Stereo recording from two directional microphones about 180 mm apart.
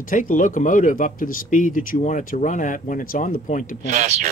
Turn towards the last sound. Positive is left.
turn(degrees=-40)  # may be behind; listen again after turning